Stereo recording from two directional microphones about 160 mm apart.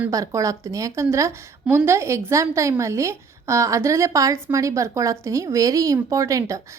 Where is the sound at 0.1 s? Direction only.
20° right (ahead or behind).